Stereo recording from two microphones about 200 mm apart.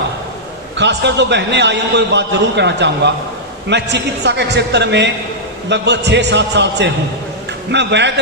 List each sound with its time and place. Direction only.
0.8 s a man's voice: 60° right (ahead or behind)